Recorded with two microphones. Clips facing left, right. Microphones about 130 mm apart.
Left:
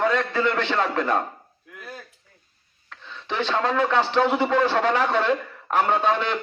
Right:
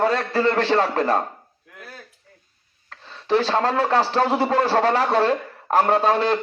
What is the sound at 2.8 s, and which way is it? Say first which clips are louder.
A man's voice: right 8 dB; 35° right (ahead or behind).